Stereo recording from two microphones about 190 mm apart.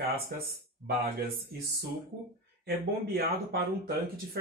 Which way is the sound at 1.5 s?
60° right (ahead or behind).